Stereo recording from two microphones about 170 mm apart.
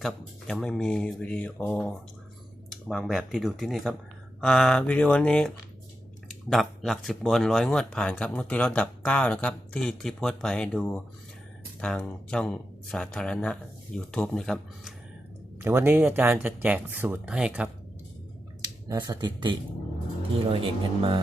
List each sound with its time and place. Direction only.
0.0 s speech: centre (ahead or behind)
15.6 s speech: 15° right (ahead or behind)
18.9 s speech: 25° right (ahead or behind)